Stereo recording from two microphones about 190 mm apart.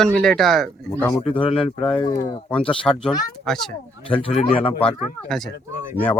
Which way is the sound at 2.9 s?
15° left (ahead or behind).